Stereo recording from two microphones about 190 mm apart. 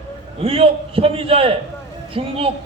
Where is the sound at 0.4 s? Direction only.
30° right (ahead or behind).